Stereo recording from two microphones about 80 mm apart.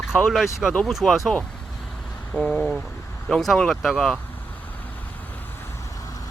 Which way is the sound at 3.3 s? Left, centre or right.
Centre.